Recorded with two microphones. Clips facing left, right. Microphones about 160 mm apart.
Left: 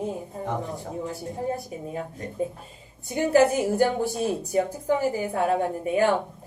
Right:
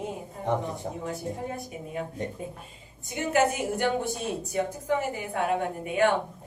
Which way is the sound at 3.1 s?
35° left (ahead or behind).